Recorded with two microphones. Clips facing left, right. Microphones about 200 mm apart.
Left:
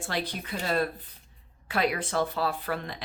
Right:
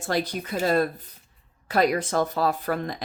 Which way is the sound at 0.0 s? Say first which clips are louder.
Right 6 dB; 45° right (ahead or behind).